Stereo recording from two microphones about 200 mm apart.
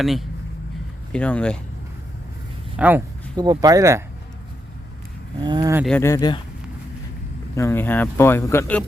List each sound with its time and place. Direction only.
0.0 s speech: centre (ahead or behind)
2.7 s speech: 5° right (ahead or behind)
3.3 s speech: 20° right (ahead or behind)
5.4 s speech: 20° right (ahead or behind)
5.8 s speech: 10° left (ahead or behind)
7.5 s speech: 10° left (ahead or behind)